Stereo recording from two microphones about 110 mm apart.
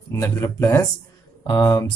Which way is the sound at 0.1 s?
30° left (ahead or behind).